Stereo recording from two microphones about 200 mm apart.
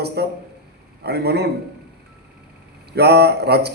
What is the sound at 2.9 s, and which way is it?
Speech, 55° right (ahead or behind).